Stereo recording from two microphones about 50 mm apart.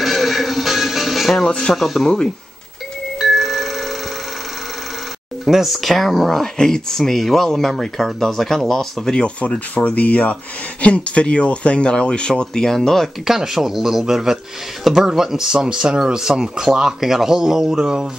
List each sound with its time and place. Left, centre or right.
0.0 s music: centre
1.7 s speech: centre
3.2 s music: centre
5.4 s speech: centre
13.3 s speech: centre